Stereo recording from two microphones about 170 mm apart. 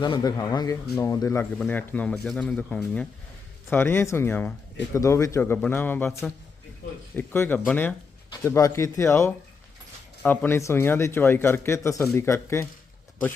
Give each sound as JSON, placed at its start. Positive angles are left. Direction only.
{"t": 0.0, "sound": "speech", "side_deg": 25}